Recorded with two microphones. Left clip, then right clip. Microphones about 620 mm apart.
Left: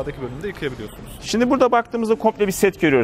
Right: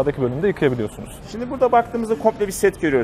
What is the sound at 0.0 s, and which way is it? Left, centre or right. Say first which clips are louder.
Speech: right 8 dB; right.